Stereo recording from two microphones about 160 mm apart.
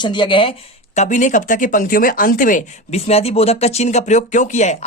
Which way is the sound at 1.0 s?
50° left (ahead or behind).